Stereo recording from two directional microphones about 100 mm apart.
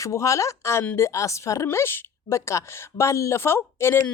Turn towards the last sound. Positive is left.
turn(degrees=25)  # may be behind; listen again after turning